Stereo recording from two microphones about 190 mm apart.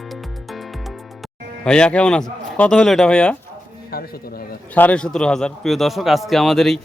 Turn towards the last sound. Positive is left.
turn(degrees=0)  # may be behind; listen again after turning